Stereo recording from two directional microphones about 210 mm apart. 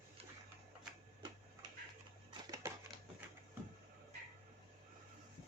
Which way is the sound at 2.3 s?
15° right (ahead or behind).